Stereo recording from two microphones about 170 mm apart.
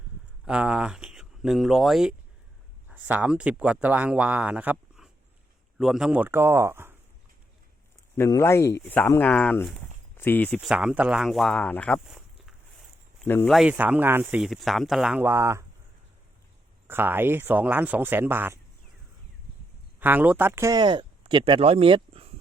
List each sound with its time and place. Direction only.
0.4 s speech: 5° right (ahead or behind)
8.1 s speech: 20° left (ahead or behind)
10.6 s speech: 5° right (ahead or behind)
12.0 s walk: centre (ahead or behind)
13.2 s speech: 10° left (ahead or behind)
13.5 s speech: 5° right (ahead or behind)
16.8 s speech: 10° right (ahead or behind)
20.0 s speech: 10° right (ahead or behind); by 22.3 s 30° right (ahead or behind)